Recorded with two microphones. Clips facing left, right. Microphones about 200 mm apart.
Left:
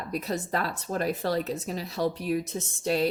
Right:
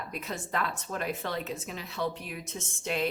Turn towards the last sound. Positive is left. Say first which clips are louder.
# left 5 dB
turn(degrees=35)  # may be behind; listen again after turning